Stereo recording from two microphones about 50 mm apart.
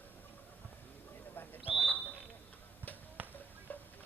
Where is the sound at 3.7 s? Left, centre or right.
Left.